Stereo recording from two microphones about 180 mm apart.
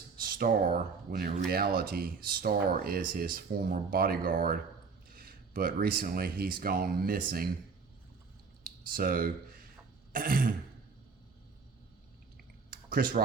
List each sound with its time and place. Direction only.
0.2 s speech: 55° right (ahead or behind)
8.6 s a sound: 50° right (ahead or behind)
10.1 s throat clearing: 55° right (ahead or behind)
12.7 s typing: 50° right (ahead or behind)